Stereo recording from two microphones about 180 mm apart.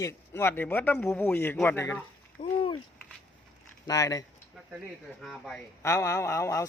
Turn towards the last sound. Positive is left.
turn(degrees=15)  # may be behind; listen again after turning